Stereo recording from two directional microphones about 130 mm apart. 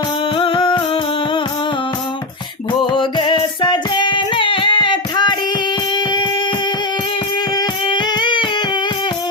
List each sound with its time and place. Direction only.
0.3 s music: 40° left (ahead or behind)
2.8 s music: 40° left (ahead or behind)
7.5 s music: 35° left (ahead or behind)